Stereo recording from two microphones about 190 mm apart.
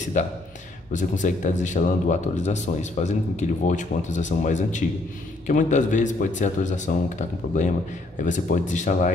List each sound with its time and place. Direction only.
0.9 s speech: 40° left (ahead or behind)